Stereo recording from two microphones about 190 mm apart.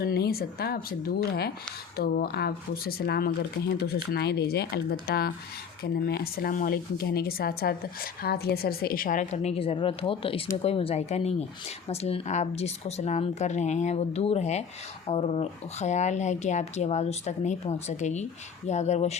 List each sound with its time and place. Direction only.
0.0 s speech: 55° left (ahead or behind); by 19.1 s 35° left (ahead or behind)